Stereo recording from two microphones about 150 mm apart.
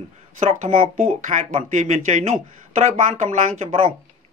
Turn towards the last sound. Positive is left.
turn(degrees=-50)  # may be behind; listen again after turning